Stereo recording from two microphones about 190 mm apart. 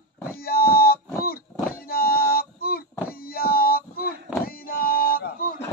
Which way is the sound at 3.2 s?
50° left (ahead or behind).